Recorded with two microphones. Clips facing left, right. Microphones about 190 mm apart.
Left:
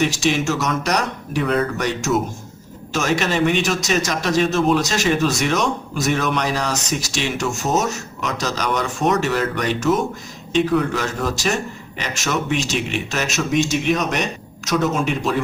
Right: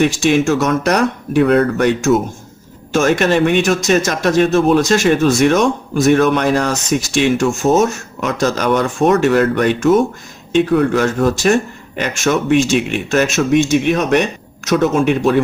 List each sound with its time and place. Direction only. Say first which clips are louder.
0.0 s speech: right 6 dB; 55° right (ahead or behind)